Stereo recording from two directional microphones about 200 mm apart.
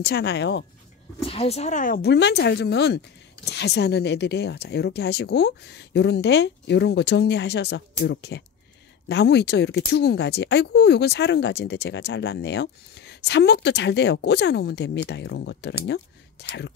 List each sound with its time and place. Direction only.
0.0 s speech: 55° left (ahead or behind)
1.2 s speech: 30° left (ahead or behind); by 16.7 s 60° left (ahead or behind)